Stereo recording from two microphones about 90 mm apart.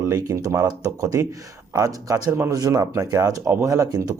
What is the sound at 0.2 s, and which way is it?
Speech, 40° right (ahead or behind).